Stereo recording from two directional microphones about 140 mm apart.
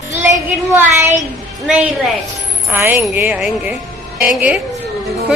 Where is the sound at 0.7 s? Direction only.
15° right (ahead or behind).